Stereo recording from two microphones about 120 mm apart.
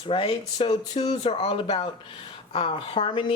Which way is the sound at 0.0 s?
45° left (ahead or behind).